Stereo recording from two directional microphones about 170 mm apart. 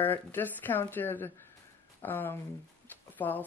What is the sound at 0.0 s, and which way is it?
Speech, 10° left (ahead or behind).